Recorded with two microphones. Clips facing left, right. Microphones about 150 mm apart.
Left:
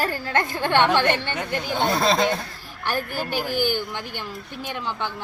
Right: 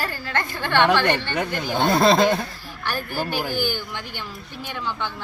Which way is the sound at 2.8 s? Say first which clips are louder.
Even; 15° left (ahead or behind).